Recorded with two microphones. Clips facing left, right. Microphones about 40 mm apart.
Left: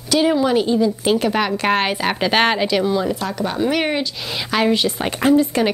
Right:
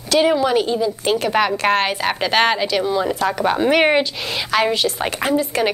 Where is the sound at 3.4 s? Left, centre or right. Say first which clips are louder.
Right 4 dB; right.